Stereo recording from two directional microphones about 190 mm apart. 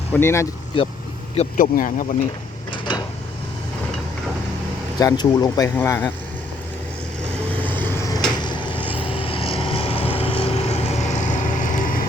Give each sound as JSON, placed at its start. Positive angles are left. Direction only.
{"t": 0.1, "sound": "speech", "side_deg": 10}
{"t": 1.4, "sound": "speech", "side_deg": 45}
{"t": 4.9, "sound": "speech", "side_deg": 20}
{"t": 7.6, "sound": "vehicle", "side_deg": 10}